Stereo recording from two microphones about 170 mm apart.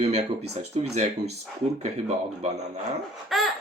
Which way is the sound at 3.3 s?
Centre (ahead or behind).